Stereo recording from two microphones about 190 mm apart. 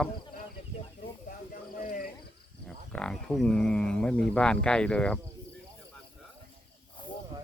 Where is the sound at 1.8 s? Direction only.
45° left (ahead or behind).